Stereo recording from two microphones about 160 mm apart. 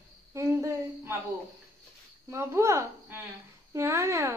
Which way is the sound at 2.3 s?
15° right (ahead or behind).